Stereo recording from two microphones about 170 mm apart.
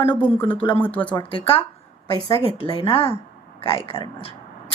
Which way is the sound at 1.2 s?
30° left (ahead or behind).